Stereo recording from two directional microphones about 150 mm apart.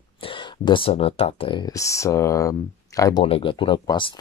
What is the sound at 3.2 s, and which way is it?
Speech, 40° left (ahead or behind).